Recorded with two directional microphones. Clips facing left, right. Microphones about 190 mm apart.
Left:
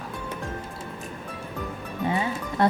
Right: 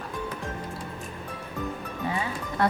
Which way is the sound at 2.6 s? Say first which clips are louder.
Left 3 dB; 20° left (ahead or behind).